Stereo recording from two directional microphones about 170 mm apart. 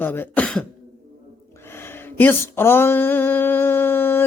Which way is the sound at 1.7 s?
15° left (ahead or behind).